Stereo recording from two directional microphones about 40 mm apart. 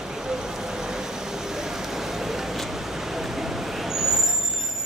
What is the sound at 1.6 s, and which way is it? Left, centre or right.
Vehicle, centre.